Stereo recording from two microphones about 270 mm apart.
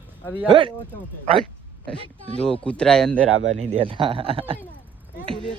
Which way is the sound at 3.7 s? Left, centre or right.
Centre.